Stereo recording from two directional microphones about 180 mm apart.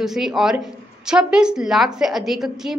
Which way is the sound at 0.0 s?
Centre (ahead or behind).